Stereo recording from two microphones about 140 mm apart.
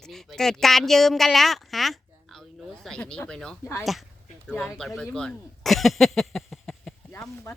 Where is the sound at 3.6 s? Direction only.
20° left (ahead or behind).